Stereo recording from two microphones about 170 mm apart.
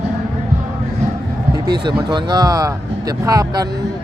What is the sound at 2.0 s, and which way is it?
Speech, 25° right (ahead or behind).